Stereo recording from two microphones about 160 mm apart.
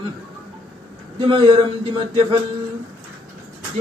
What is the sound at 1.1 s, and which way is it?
Speech, 30° right (ahead or behind).